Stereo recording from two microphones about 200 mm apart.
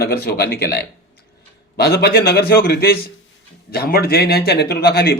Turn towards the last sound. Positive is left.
turn(degrees=50)  # may be behind; listen again after turning